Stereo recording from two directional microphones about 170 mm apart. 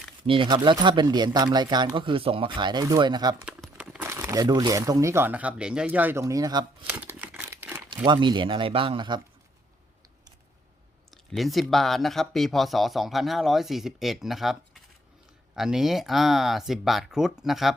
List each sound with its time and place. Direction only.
0.3 s speech: 30° right (ahead or behind)
3.4 s speech: 5° right (ahead or behind); by 6.7 s 25° right (ahead or behind)
6.9 s scissors: 10° right (ahead or behind)
7.5 s crumpling: 15° right (ahead or behind)
7.9 s speech: 30° right (ahead or behind)
11.1 s a sound: centre (ahead or behind)
11.7 s speech: centre (ahead or behind)